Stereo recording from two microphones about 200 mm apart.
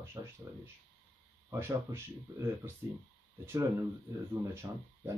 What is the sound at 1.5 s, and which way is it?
Speech, 10° right (ahead or behind).